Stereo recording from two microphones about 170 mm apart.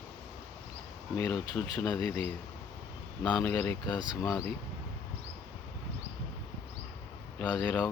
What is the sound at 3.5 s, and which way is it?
Speech, 10° left (ahead or behind).